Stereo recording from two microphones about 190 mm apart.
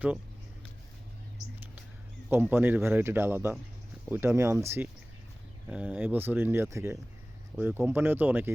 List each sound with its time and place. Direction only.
2.3 s speech: 10° right (ahead or behind)
5.6 s speech: 10° right (ahead or behind)